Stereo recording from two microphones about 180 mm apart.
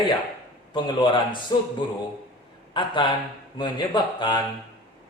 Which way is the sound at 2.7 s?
25° left (ahead or behind).